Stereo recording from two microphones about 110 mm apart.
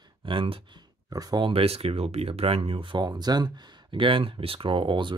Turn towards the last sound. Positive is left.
turn(degrees=-50)  # may be behind; listen again after turning